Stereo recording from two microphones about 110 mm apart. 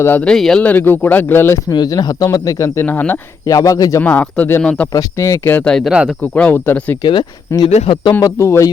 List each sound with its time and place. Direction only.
0.0 s speech: 20° left (ahead or behind)
0.3 s speech: 5° left (ahead or behind)
0.6 s speech: 15° left (ahead or behind)
1.7 s speech: 40° left (ahead or behind)
2.8 s speech: 15° left (ahead or behind)
3.4 s speech: 30° left (ahead or behind)
4.0 s speech: 15° left (ahead or behind)
4.6 s speech: 5° left (ahead or behind)
4.9 s speech: 30° left (ahead or behind)
5.6 s speech: 5° left (ahead or behind)
5.9 s speech: 10° right (ahead or behind)
6.3 s speech: 15° left (ahead or behind)
7.0 s speech: 40° left (ahead or behind)
8.2 s speech: 25° left (ahead or behind)